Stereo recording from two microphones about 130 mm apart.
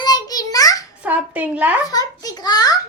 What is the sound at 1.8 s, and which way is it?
Speech, 30° left (ahead or behind).